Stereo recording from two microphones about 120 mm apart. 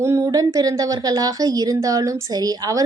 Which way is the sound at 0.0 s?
25° right (ahead or behind).